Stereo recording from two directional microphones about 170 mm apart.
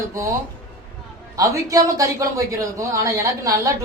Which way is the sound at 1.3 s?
20° right (ahead or behind).